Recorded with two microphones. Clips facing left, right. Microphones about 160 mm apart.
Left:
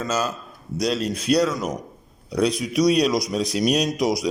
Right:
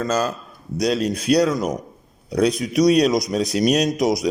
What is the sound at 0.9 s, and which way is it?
A man's voice, 55° right (ahead or behind).